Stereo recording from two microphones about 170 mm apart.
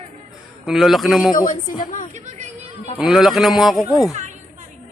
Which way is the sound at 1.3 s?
50° left (ahead or behind).